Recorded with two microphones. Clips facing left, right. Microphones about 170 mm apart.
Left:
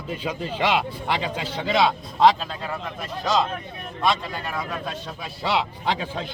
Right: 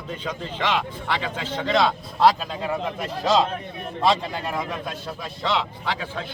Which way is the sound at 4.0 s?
25° right (ahead or behind).